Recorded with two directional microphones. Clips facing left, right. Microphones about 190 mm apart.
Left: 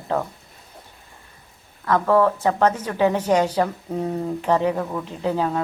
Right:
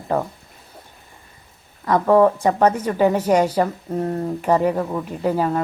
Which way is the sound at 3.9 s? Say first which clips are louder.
Right 2 dB; centre (ahead or behind).